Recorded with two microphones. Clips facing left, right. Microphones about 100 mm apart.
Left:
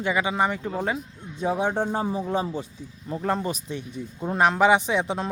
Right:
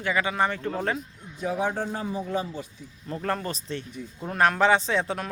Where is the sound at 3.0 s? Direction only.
15° left (ahead or behind).